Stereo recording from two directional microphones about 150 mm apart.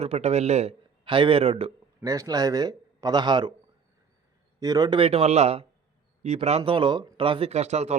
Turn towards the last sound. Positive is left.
turn(degrees=-50)  # may be behind; listen again after turning